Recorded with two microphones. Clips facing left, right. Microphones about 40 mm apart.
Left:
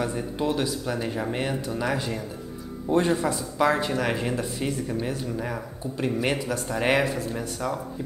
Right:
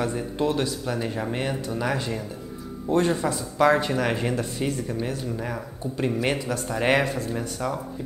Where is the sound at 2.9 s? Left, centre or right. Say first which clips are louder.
Even; left.